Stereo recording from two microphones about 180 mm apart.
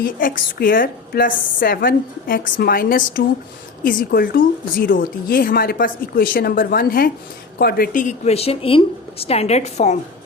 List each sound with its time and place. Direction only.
0.0 s a woman's voice: 50° left (ahead or behind)